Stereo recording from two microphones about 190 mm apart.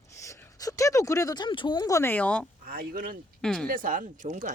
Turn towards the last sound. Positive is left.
turn(degrees=-45)  # may be behind; listen again after turning